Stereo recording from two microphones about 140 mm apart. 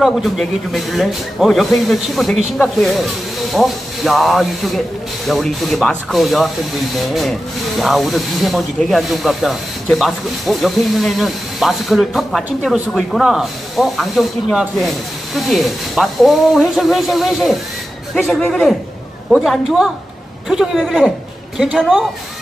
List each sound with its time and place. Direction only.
0.0 s speech: centre (ahead or behind)